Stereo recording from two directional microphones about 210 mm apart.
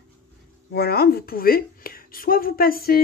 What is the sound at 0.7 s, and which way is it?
Speech, 50° left (ahead or behind).